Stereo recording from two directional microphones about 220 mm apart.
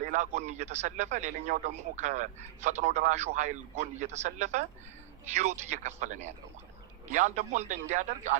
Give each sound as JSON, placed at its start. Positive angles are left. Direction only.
{"t": 0.1, "sound": "speech", "side_deg": -35}